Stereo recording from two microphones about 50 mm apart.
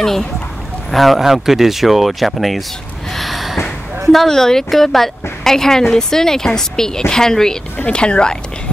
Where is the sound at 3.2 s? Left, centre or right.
Centre.